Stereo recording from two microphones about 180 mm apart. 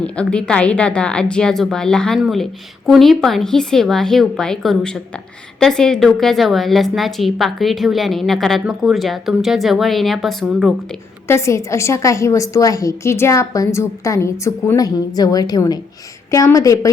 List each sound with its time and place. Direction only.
0.0 s a woman's voice: 5° left (ahead or behind)
11.3 s a woman's voice: 15° left (ahead or behind)